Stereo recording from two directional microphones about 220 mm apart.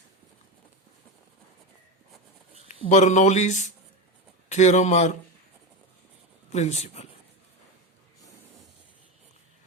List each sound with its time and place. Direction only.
2.6 s a man's voice: 30° left (ahead or behind)
6.5 s speech: 30° left (ahead or behind)